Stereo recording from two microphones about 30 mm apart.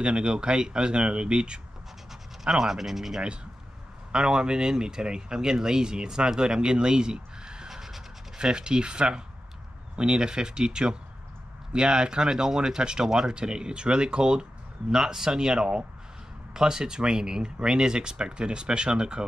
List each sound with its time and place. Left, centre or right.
0.0 s speech: right
2.4 s speech: centre
4.1 s speech: right
7.7 s music: centre
8.4 s speech: right
13.3 s speech: right